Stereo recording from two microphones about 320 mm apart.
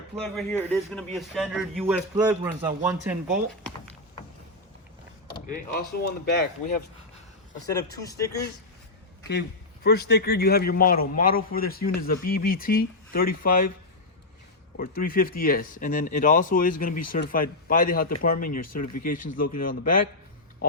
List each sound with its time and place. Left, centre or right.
0.2 s a man's voice: centre
5.3 s speech: left
7.7 s speech: centre
9.8 s speech: left
14.8 s speech: left